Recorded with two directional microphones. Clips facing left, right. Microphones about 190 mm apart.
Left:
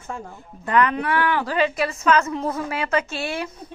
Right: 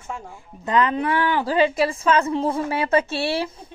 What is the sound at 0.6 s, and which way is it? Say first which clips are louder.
Speech: even; 25° right (ahead or behind).